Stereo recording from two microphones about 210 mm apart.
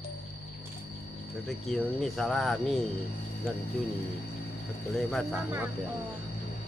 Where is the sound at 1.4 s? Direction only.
Centre (ahead or behind).